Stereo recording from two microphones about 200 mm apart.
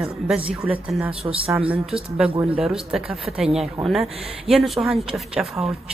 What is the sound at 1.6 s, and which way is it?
A woman's voice, 5° right (ahead or behind).